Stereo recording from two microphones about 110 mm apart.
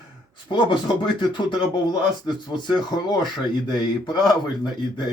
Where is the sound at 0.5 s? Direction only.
45° left (ahead or behind).